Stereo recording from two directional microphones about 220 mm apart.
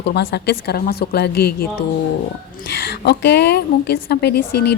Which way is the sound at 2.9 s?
50° left (ahead or behind).